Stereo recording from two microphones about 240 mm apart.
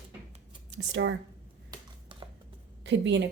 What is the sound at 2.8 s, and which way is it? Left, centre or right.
Speech, right.